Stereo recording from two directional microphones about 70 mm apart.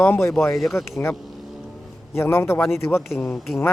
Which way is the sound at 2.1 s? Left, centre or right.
Left.